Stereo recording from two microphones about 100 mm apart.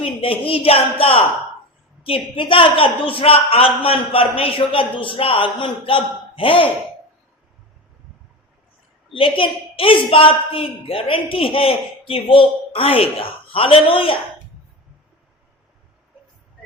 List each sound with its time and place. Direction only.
0.0 s speech: 65° left (ahead or behind)
2.0 s speech: 60° left (ahead or behind)
9.1 s speech: 60° left (ahead or behind)